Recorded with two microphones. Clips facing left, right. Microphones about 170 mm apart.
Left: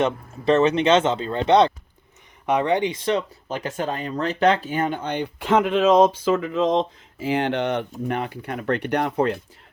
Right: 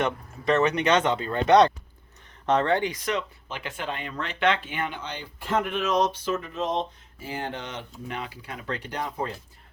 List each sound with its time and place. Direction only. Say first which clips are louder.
0.0 s speech: left 5 dB; 30° left (ahead or behind); by 9.4 s 70° left (ahead or behind)